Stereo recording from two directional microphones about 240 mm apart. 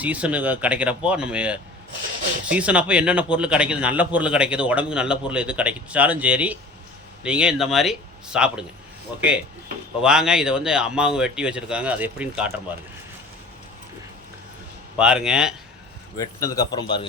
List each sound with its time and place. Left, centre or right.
0.0 s a man's voice: centre
14.9 s a man's voice: centre
16.1 s speech: centre